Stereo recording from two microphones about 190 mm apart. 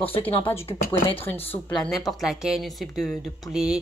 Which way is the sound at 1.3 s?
10° left (ahead or behind).